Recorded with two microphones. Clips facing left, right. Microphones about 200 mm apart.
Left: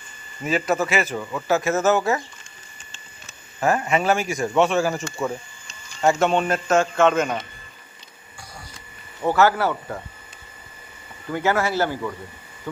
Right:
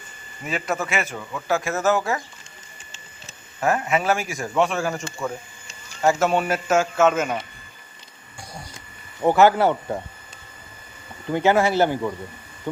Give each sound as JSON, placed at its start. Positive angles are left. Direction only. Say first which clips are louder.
{"t": 0.5, "sound": "speech", "louder": "left 4 dB", "side_deg": 0}
{"t": 3.6, "sound": "a man's voice", "louder": "left 1 dB", "side_deg": 0}
{"t": 9.2, "sound": "a man's voice", "louder": "right 3 dB", "side_deg": -15}
{"t": 11.3, "sound": "a man's voice", "louder": "right 3 dB", "side_deg": -20}